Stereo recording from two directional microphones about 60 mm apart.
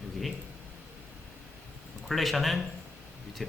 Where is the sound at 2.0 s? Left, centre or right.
Centre.